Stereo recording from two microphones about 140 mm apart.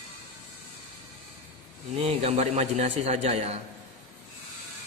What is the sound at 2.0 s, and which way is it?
A man's voice, 50° right (ahead or behind).